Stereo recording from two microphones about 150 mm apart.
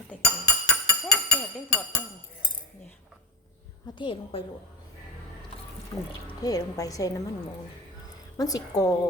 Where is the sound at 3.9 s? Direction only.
35° left (ahead or behind).